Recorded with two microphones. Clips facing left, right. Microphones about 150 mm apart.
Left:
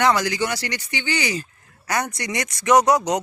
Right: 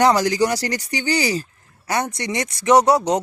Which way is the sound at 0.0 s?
35° right (ahead or behind).